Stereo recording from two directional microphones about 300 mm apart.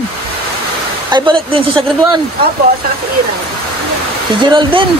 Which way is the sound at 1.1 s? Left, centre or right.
Centre.